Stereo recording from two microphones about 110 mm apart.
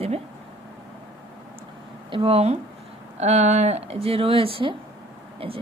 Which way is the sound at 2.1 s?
55° right (ahead or behind).